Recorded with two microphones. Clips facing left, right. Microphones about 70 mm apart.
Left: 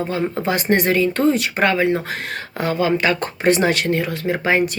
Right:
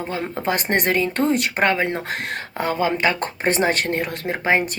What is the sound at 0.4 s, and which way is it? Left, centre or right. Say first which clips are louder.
Speech: left 2 dB; right.